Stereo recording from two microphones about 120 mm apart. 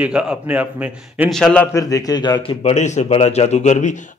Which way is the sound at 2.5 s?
70° left (ahead or behind).